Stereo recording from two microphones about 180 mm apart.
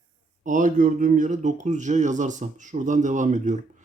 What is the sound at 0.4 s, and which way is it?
Speech, 45° right (ahead or behind).